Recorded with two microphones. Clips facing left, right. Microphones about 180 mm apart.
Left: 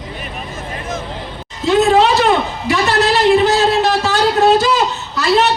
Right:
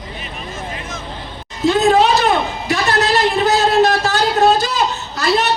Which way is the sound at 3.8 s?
45° right (ahead or behind).